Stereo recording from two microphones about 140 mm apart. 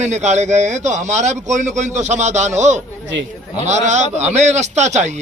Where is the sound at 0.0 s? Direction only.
55° right (ahead or behind).